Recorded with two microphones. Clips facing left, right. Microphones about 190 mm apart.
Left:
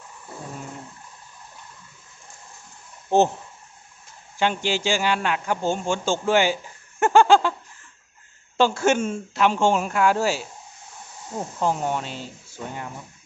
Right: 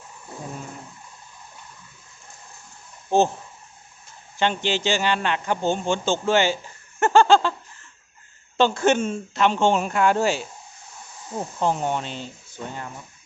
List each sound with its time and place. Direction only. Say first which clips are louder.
3.1 s speech: left 1 dB; 20° left (ahead or behind)
4.4 s a man's voice: even; 10° left (ahead or behind)
7.0 s a sound: even; 15° left (ahead or behind)
8.5 s a man's voice: right 1 dB; 10° left (ahead or behind)
11.6 s speech: right 1 dB; 5° left (ahead or behind)